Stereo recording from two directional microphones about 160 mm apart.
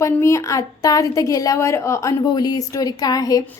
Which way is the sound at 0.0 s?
20° left (ahead or behind).